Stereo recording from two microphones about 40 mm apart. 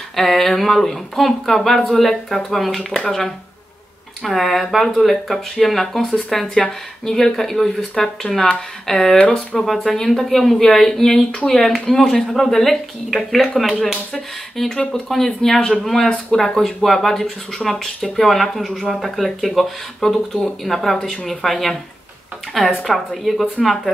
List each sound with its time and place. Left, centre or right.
0.1 s speech: centre
16.4 s speech: centre
20.0 s speech: centre
22.8 s speech: centre